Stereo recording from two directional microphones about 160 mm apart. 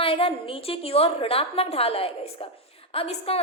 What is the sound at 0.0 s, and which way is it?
A woman's voice, 35° left (ahead or behind).